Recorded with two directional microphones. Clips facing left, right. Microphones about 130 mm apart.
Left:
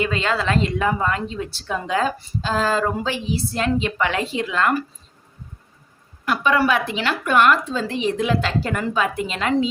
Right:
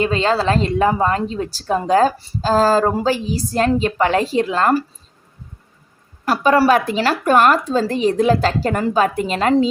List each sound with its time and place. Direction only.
0.0 s a woman's voice: 35° right (ahead or behind)
6.2 s a woman's voice: 40° right (ahead or behind)